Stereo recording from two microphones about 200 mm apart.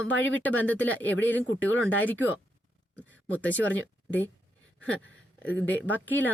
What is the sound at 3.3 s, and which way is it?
Speech, 10° left (ahead or behind).